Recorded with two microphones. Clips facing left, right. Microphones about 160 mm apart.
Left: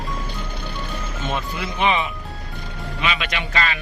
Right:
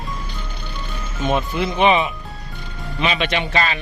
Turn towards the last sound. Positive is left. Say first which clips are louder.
# right 4 dB
turn(degrees=-30)  # may be behind; listen again after turning